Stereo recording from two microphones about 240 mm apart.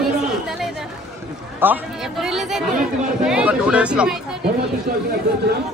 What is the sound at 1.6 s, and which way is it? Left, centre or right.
Speech, centre.